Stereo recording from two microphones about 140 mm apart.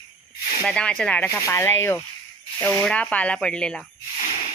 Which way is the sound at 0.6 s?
5° left (ahead or behind).